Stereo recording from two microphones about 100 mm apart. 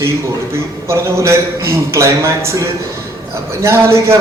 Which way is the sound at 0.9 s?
25° right (ahead or behind).